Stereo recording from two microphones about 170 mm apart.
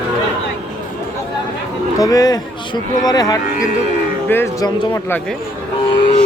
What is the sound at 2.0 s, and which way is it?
Speech, 20° left (ahead or behind).